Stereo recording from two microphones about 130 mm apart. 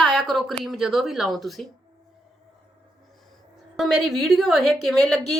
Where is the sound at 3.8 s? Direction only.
Centre (ahead or behind).